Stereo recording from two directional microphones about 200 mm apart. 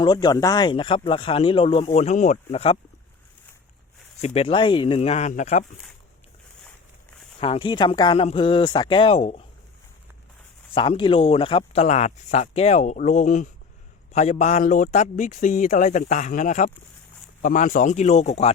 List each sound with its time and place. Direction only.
0.0 s speech: 20° left (ahead or behind)
4.2 s speech: 30° left (ahead or behind)
7.3 s speech: 30° left (ahead or behind)
10.8 s speech: 25° left (ahead or behind)